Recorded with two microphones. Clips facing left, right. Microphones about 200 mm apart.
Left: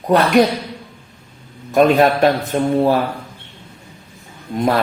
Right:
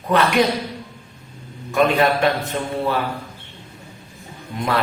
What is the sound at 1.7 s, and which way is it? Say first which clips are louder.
A man's voice: left 5 dB; 40° left (ahead or behind).